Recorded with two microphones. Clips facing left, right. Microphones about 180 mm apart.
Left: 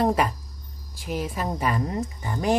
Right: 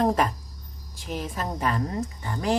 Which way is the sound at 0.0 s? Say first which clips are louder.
Left 1 dB; 10° left (ahead or behind).